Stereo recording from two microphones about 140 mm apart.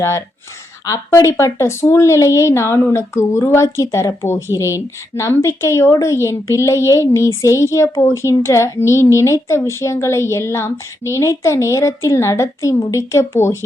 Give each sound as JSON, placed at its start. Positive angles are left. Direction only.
{"t": 0.0, "sound": "speech", "side_deg": 20}